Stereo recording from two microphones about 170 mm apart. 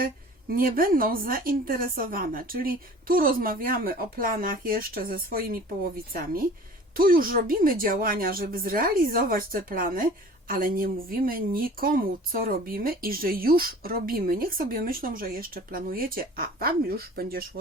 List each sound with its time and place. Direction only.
0.5 s speech: 55° right (ahead or behind)
6.9 s speech: 55° right (ahead or behind)